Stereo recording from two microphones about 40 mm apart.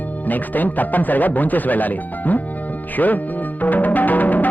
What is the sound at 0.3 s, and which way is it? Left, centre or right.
Speech, left.